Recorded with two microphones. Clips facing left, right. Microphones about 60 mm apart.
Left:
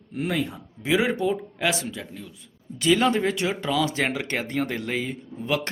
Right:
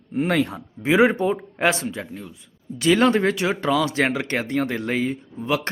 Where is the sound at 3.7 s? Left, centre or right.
Centre.